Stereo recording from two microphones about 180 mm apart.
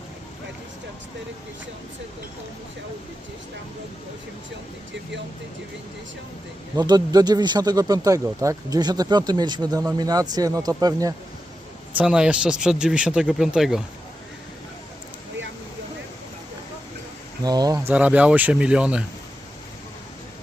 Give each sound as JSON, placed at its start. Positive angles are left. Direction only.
{"t": 6.7, "sound": "speech", "side_deg": -20}
{"t": 11.9, "sound": "speech", "side_deg": -5}
{"t": 17.4, "sound": "speech", "side_deg": -20}
{"t": 17.9, "sound": "speech", "side_deg": -5}